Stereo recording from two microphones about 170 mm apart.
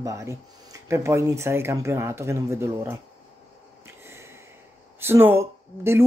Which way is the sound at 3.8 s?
15° right (ahead or behind).